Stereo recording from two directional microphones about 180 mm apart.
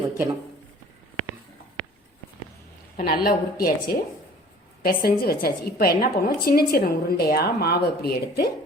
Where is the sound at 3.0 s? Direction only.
55° left (ahead or behind).